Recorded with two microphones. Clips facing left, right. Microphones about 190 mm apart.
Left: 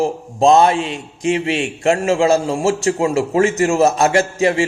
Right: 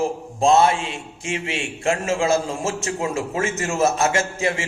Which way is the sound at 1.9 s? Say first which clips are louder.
Left 6 dB; 35° left (ahead or behind).